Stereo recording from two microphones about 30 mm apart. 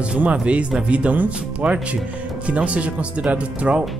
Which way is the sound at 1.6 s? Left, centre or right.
Right.